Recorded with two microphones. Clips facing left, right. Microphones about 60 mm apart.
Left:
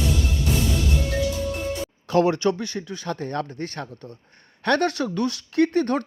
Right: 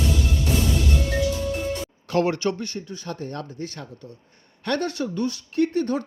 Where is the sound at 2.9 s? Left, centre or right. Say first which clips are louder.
Left 4 dB; left.